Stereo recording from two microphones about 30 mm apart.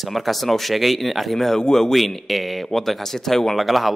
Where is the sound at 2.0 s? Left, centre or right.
Centre.